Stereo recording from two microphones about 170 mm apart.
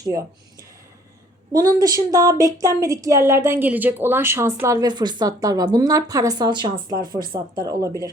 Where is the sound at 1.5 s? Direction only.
20° right (ahead or behind).